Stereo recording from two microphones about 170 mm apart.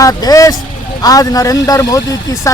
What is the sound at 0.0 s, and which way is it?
Speech, 20° left (ahead or behind).